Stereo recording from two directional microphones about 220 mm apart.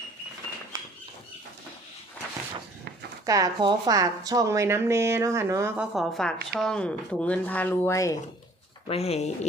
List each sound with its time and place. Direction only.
0.7 s a sound: 15° right (ahead or behind)
3.2 s speech: 15° right (ahead or behind); by 8.2 s 15° left (ahead or behind)
8.9 s speech: 30° left (ahead or behind)